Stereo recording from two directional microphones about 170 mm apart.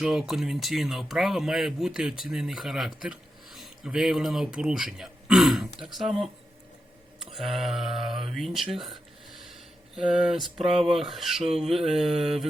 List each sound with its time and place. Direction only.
0.0 s speech: centre (ahead or behind)
7.2 s speech: centre (ahead or behind)